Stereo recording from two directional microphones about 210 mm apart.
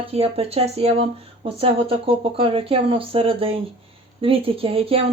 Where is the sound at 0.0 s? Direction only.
30° right (ahead or behind).